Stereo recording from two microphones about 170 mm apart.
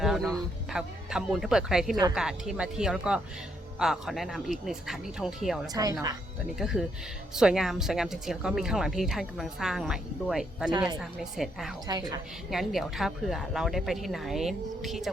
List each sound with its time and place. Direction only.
0.0 s speech: centre (ahead or behind)
5.7 s speech: 20° right (ahead or behind)
6.6 s speech: centre (ahead or behind)
10.7 s speech: 25° right (ahead or behind)
11.2 s speech: centre (ahead or behind)
11.9 s speech: 25° right (ahead or behind)
12.5 s speech: centre (ahead or behind)